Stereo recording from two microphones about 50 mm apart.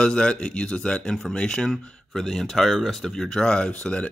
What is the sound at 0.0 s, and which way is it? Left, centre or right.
Speech, centre.